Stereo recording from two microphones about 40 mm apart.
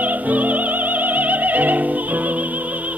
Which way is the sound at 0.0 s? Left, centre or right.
Right.